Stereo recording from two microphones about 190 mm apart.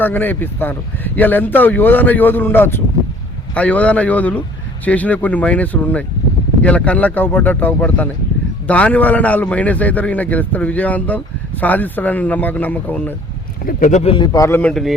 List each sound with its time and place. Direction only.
0.0 s speech: 10° left (ahead or behind)
13.7 s speech: 45° left (ahead or behind)
14.3 s speech: 15° left (ahead or behind)